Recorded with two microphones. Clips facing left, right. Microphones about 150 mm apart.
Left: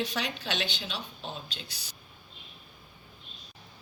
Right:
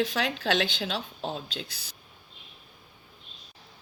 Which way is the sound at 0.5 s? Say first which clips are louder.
Right 7 dB; 90° right.